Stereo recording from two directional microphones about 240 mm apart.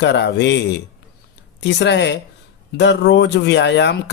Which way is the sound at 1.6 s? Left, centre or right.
Left.